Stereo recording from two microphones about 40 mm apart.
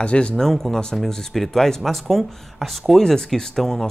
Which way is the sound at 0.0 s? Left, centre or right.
Left.